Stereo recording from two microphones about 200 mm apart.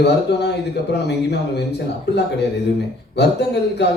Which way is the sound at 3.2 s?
55° left (ahead or behind).